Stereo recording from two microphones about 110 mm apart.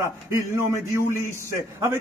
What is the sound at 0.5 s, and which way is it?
Speech, 25° right (ahead or behind).